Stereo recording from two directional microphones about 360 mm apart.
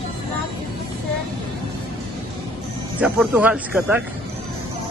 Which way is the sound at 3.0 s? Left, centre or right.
Centre.